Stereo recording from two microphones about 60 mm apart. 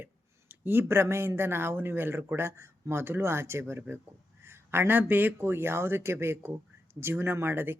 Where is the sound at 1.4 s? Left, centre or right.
Right.